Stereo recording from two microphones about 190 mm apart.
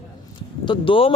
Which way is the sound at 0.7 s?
25° left (ahead or behind).